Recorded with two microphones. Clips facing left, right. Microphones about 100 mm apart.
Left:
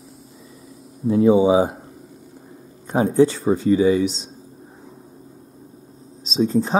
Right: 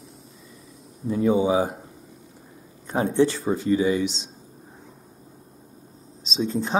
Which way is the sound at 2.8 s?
20° left (ahead or behind).